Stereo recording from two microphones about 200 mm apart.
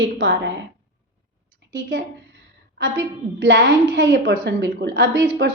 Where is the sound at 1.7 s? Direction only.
70° right (ahead or behind).